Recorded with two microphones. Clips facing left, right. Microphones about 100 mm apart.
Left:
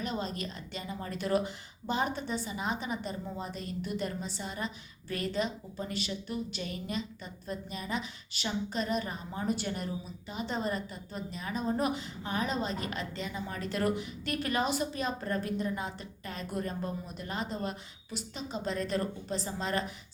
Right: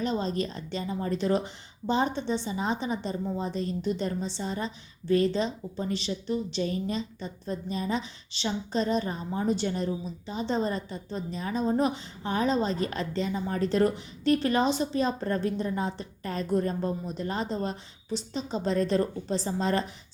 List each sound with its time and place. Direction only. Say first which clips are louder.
0.0 s a woman's voice: right 7 dB; 30° right (ahead or behind)